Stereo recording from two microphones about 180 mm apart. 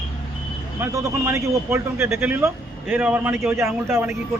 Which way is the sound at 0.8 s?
15° right (ahead or behind).